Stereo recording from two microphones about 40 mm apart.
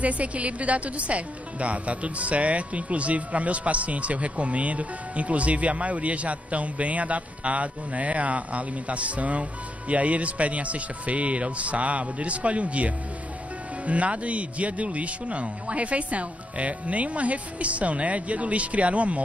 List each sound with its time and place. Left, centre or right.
0.0 s speech: right